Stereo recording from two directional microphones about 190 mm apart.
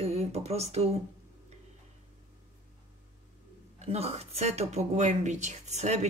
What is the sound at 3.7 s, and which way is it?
Speech, 30° right (ahead or behind).